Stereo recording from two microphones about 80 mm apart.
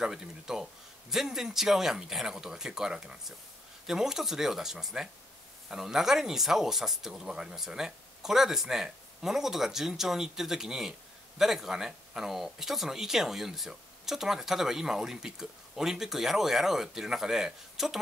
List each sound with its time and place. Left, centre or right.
0.0 s speech: centre